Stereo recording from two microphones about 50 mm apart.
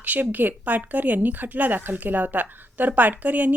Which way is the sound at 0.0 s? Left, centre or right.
Right.